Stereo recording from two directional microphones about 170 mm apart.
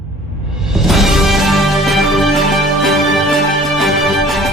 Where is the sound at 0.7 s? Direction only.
Centre (ahead or behind).